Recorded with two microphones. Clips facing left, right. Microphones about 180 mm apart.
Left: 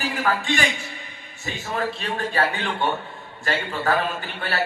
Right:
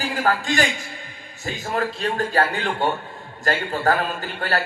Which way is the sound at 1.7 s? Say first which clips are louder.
Right 3 dB; 40° right (ahead or behind).